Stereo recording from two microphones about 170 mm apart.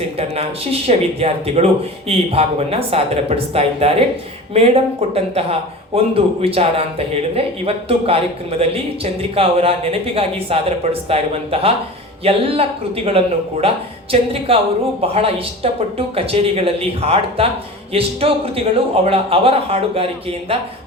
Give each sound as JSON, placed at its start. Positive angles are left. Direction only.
{"t": 0.2, "sound": "speech", "side_deg": -35}